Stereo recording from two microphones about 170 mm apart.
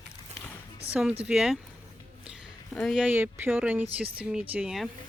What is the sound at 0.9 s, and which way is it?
Speech, 5° right (ahead or behind).